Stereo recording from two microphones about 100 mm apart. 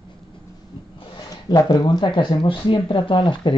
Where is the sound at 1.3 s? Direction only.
40° left (ahead or behind); by 3.5 s 55° left (ahead or behind).